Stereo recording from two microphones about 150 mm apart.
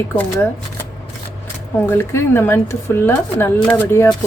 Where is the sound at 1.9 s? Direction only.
15° left (ahead or behind).